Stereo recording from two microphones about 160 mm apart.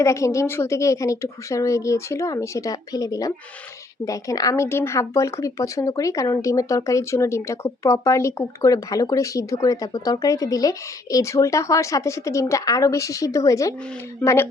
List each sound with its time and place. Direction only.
0.0 s a woman's voice: 20° left (ahead or behind)